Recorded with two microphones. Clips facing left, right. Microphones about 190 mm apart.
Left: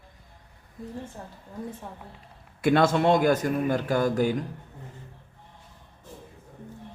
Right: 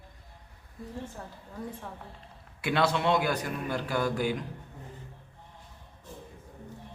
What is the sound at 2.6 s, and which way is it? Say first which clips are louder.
Speech: left 6 dB; 45° left (ahead or behind).